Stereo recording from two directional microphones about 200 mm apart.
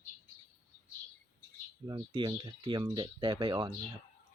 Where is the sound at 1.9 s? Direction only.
20° right (ahead or behind).